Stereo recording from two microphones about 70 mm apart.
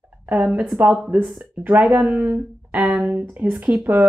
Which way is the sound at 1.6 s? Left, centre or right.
Right.